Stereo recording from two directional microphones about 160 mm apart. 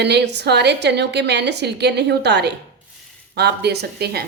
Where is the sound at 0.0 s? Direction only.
90° right.